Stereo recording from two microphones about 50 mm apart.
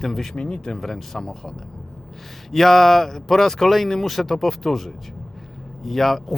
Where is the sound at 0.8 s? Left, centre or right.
Centre.